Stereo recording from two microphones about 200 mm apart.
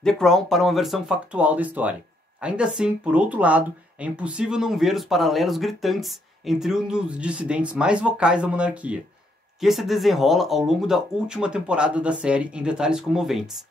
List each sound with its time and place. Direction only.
0.0 s speech: centre (ahead or behind)